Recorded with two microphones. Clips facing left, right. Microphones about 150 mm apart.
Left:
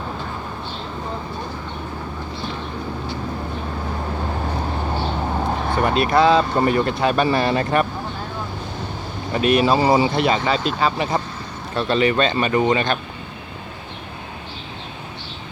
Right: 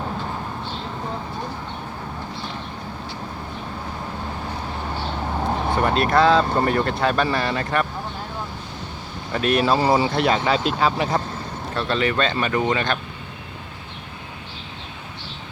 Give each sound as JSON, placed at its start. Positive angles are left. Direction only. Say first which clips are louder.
{"t": 5.8, "sound": "speech", "louder": "left 2 dB", "side_deg": 5}
{"t": 7.4, "sound": "speech", "louder": "left 4 dB", "side_deg": 20}
{"t": 9.3, "sound": "speech", "louder": "left 3 dB", "side_deg": 5}
{"t": 10.2, "sound": "speech", "louder": "left 1 dB", "side_deg": 0}